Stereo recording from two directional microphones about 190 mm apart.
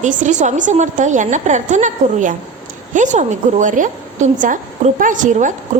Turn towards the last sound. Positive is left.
turn(degrees=-40)  # may be behind; listen again after turning